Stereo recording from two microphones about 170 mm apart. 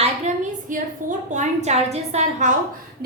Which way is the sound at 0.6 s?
50° right (ahead or behind).